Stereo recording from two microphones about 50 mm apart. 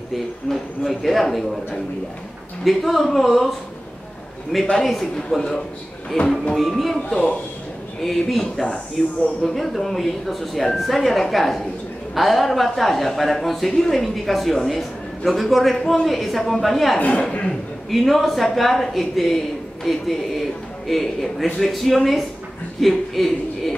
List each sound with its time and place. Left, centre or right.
0.1 s speech: centre
2.6 s speech: centre
4.7 s speech: centre
6.5 s speech: centre
17.2 s speech: left
17.8 s a man's voice: centre